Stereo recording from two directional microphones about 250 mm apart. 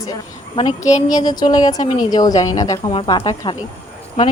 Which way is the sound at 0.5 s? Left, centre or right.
Left.